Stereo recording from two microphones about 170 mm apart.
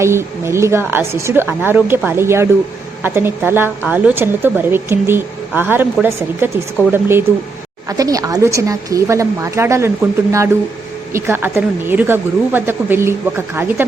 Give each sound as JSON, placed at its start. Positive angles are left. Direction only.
{"t": 0.0, "sound": "a woman's voice", "side_deg": -15}